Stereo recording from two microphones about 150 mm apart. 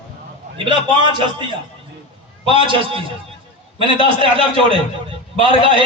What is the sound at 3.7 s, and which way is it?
A man's voice, 35° right (ahead or behind).